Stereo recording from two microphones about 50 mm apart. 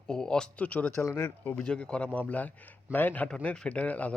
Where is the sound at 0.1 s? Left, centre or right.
Centre.